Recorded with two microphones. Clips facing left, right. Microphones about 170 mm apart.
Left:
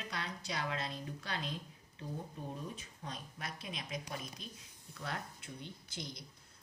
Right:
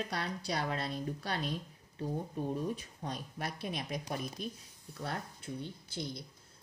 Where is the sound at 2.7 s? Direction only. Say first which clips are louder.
Right 6 dB; 35° right (ahead or behind).